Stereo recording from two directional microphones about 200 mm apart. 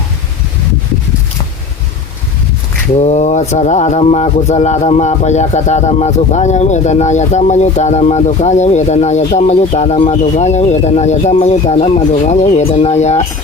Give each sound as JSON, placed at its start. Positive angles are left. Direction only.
{"t": 2.9, "sound": "speech", "side_deg": 35}